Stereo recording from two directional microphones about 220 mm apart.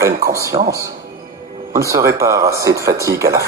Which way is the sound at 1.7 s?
15° right (ahead or behind).